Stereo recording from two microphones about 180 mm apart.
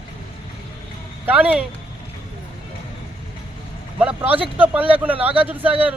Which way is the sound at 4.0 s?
10° right (ahead or behind).